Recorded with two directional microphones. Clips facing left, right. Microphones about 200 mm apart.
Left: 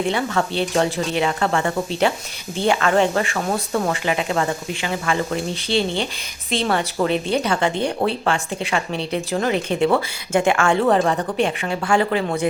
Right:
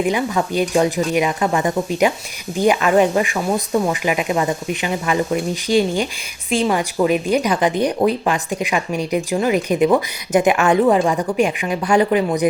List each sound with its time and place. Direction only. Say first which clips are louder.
0.0 s speech: right 2 dB; 15° right (ahead or behind)